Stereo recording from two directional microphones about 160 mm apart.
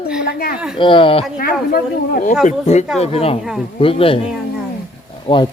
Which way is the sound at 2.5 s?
45° left (ahead or behind).